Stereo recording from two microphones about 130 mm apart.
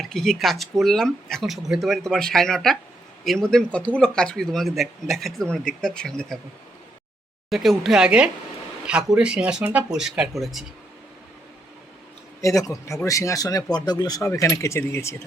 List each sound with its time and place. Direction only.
0.0 s speech: centre (ahead or behind)
7.5 s speech: centre (ahead or behind)
12.4 s speech: 25° left (ahead or behind)